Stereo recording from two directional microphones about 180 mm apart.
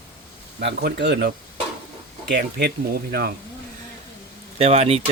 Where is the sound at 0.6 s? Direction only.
65° right (ahead or behind).